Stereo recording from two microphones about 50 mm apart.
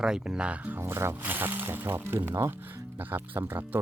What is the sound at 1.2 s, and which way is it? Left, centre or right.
Speech, right.